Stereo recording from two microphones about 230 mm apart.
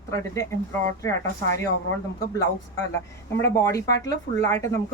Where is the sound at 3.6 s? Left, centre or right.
Centre.